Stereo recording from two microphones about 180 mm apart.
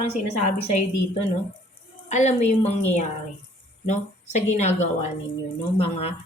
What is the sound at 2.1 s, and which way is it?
Speech, 40° left (ahead or behind).